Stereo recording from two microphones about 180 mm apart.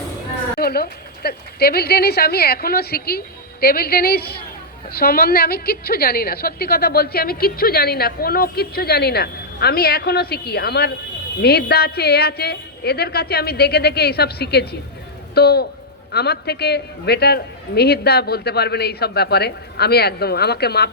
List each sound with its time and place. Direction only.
0.6 s a woman's voice: 60° left (ahead or behind)